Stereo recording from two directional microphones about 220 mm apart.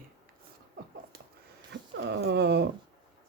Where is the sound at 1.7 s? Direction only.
50° right (ahead or behind).